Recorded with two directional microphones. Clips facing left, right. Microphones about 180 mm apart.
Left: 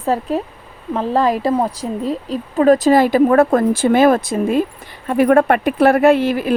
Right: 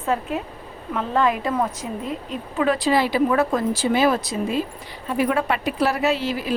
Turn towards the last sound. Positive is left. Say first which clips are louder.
# left 9 dB
turn(degrees=55)  # may be behind; listen again after turning